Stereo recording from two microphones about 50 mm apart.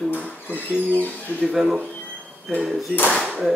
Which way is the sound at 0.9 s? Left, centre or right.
Left.